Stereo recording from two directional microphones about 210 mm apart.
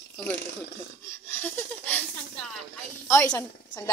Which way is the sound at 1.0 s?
10° left (ahead or behind).